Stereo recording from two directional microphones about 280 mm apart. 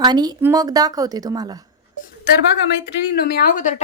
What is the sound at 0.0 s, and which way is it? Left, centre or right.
A woman's voice, centre.